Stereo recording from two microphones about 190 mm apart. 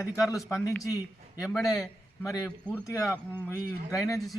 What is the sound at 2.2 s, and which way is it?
Speech, 15° left (ahead or behind).